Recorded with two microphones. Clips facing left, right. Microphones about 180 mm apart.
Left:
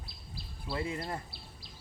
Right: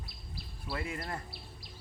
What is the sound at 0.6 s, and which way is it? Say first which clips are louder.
Speech: left 3 dB; 25° left (ahead or behind).